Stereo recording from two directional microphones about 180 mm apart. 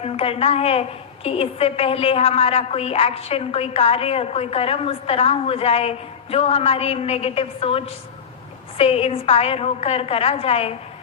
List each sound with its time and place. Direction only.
0.0 s a woman's voice: 30° left (ahead or behind)